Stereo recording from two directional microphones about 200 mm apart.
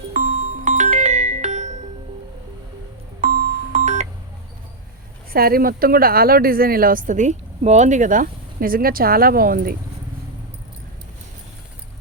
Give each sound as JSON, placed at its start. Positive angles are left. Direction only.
{"t": 0.1, "sound": "music", "side_deg": -35}
{"t": 3.7, "sound": "music", "side_deg": -35}
{"t": 5.3, "sound": "speech", "side_deg": -50}